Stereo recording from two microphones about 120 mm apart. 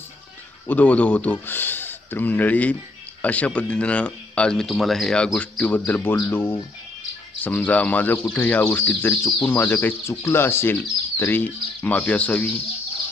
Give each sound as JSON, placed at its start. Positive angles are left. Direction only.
{"t": 0.7, "sound": "speech", "side_deg": 15}